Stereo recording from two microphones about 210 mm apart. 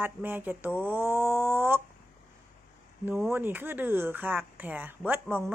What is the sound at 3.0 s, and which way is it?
Speech, 10° right (ahead or behind).